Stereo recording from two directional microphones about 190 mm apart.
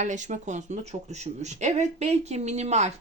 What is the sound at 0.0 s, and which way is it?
Speech, 40° right (ahead or behind).